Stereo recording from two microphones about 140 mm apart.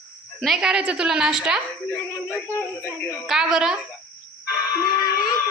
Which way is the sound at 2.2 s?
20° left (ahead or behind).